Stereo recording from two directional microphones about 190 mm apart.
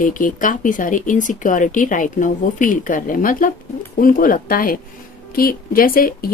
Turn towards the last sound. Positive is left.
turn(degrees=50)  # may be behind; listen again after turning